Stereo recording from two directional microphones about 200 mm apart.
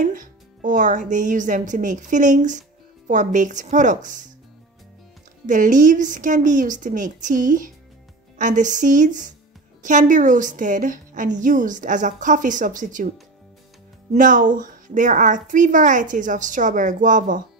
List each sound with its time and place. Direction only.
0.0 s a woman's voice: 40° right (ahead or behind)
5.5 s a woman's voice: 40° right (ahead or behind)
14.1 s a woman's voice: 40° right (ahead or behind)